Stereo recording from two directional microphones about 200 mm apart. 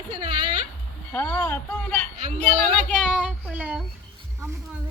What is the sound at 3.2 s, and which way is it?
Child singing, 5° right (ahead or behind).